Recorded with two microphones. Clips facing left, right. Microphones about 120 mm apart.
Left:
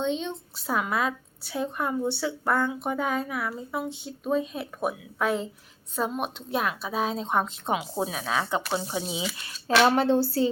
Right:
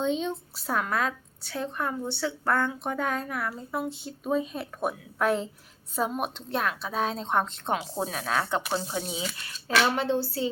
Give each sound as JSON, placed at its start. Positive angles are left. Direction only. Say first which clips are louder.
{"t": 0.0, "sound": "a woman's voice", "louder": "right 1 dB", "side_deg": -5}
{"t": 9.8, "sound": "speech", "louder": "left 8 dB", "side_deg": 40}